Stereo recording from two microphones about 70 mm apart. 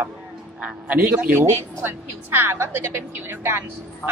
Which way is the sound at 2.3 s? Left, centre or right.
Right.